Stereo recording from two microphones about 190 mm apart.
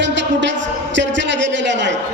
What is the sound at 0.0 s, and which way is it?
Music, 70° right (ahead or behind).